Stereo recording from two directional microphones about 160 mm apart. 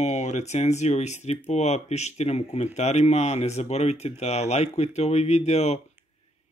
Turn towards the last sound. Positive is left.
turn(degrees=45)  # may be behind; listen again after turning